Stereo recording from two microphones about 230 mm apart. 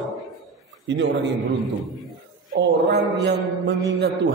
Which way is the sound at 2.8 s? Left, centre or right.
Right.